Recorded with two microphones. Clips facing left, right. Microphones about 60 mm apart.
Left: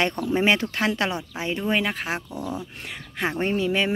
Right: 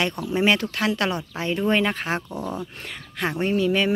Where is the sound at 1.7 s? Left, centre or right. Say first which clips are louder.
Right 3 dB; centre.